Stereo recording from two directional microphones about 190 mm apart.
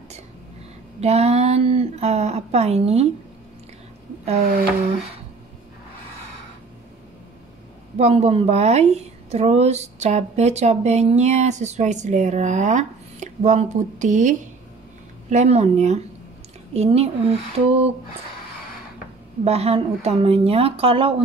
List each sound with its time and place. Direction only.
1.0 s speech: 35° right (ahead or behind)
8.0 s a woman's voice: 35° right (ahead or behind)
19.4 s a woman's voice: 35° right (ahead or behind)